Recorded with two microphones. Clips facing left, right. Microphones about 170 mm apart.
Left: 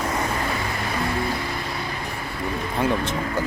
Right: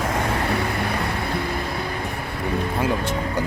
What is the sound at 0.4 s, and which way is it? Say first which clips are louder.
Vehicle: right 4 dB; 65° right (ahead or behind).